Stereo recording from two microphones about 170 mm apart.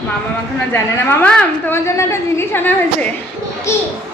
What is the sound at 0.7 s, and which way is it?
A woman's voice, 15° left (ahead or behind).